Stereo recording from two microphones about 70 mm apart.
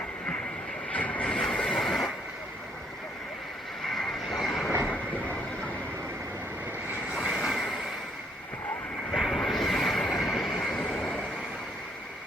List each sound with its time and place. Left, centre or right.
0.9 s train: left
1.8 s neigh: centre
3.8 s vehicle: centre
4.9 s a sound: left
7.3 s train: centre
9.1 s vehicle: centre
9.4 s a sound: centre
10.2 s train: centre
10.8 s vehicle: centre